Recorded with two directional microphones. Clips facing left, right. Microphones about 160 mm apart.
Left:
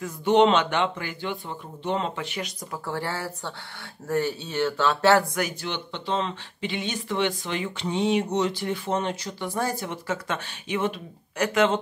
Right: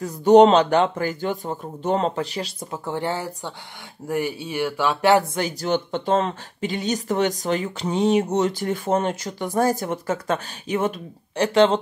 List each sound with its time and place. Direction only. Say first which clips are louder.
0.0 s speech: right 7 dB; 40° right (ahead or behind)
2.8 s speech: right 4 dB; 20° right (ahead or behind)
5.6 s speech: right 10 dB; 45° right (ahead or behind)
11.3 s speech: right 5 dB; 30° right (ahead or behind)